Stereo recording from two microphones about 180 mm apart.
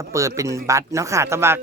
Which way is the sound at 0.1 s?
15° right (ahead or behind).